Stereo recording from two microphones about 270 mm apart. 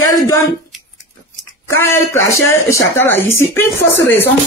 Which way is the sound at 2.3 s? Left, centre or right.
Centre.